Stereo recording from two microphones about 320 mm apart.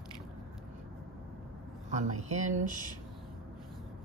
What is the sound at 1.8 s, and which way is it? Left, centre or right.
Speech, right.